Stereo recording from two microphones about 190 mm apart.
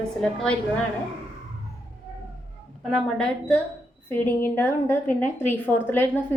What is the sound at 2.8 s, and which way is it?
A woman's voice, 5° left (ahead or behind).